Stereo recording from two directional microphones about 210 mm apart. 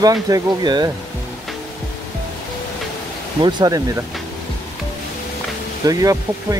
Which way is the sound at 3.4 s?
20° right (ahead or behind).